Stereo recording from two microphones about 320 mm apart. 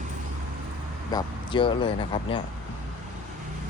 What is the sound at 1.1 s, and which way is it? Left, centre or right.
Speech, centre.